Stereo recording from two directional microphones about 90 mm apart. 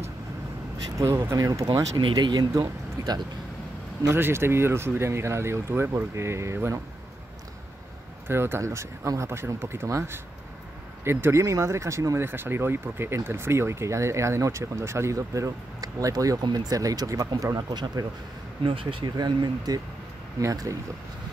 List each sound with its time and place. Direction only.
0.9 s speech: 35° right (ahead or behind)
2.1 s speech: 50° right (ahead or behind)
3.0 s a sound: 40° right (ahead or behind)
4.1 s speech: 25° right (ahead or behind)
8.3 s speech: 25° right (ahead or behind)
12.3 s speech: 25° right (ahead or behind)
17.6 s speech: 50° right (ahead or behind)
18.6 s speech: 75° right (ahead or behind)
19.1 s speech: 50° right (ahead or behind)